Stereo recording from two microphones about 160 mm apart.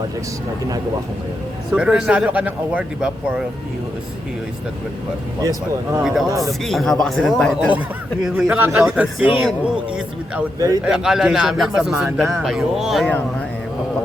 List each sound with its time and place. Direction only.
1.7 s speech: 5° right (ahead or behind)
6.0 s a man's voice: centre (ahead or behind)
6.2 s speech: 20° right (ahead or behind)
6.5 s a man's voice: centre (ahead or behind)